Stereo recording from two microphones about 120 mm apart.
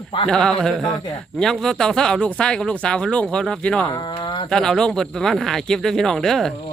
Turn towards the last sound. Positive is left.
turn(degrees=5)  # may be behind; listen again after turning